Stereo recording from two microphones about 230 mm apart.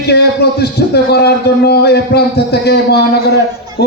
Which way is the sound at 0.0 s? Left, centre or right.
Left.